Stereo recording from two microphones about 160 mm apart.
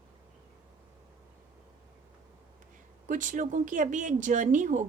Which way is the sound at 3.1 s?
55° right (ahead or behind).